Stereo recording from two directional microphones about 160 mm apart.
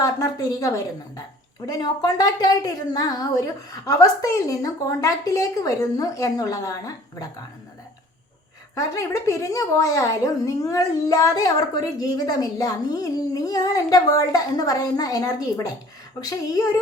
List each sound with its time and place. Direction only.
0.0 s a sound: 20° left (ahead or behind)
1.6 s a woman's voice: 20° left (ahead or behind)
8.7 s a woman's voice: 20° left (ahead or behind)